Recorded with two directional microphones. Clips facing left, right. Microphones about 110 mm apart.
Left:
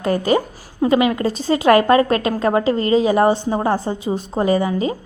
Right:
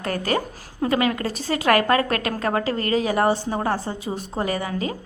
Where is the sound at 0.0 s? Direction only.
20° left (ahead or behind).